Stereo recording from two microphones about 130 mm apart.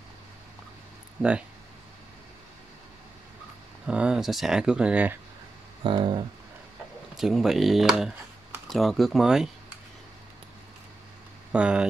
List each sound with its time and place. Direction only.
3.8 s speech: 10° right (ahead or behind)
5.9 s speech: 35° right (ahead or behind)
7.2 s speech: 5° right (ahead or behind)
11.5 s speech: 10° right (ahead or behind)